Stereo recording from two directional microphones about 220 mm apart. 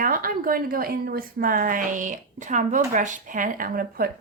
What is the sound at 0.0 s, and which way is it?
A woman's voice, 40° right (ahead or behind).